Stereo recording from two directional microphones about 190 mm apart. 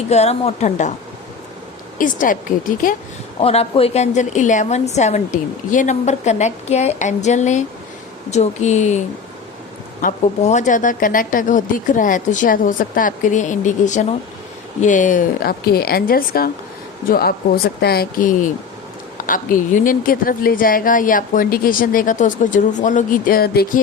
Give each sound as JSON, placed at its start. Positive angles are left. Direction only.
{"t": 0.1, "sound": "a woman's voice", "side_deg": 35}
{"t": 2.0, "sound": "a woman's voice", "side_deg": 45}
{"t": 3.4, "sound": "a woman's voice", "side_deg": 30}